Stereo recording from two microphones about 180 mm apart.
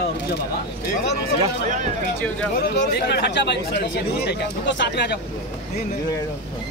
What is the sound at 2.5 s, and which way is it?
Speech, 65° left (ahead or behind).